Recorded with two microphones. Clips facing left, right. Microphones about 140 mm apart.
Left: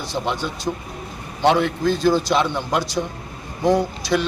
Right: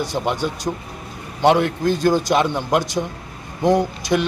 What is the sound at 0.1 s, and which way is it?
Speech, 15° right (ahead or behind).